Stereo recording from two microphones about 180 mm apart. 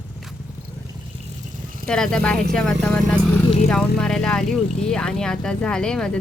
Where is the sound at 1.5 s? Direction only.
50° right (ahead or behind).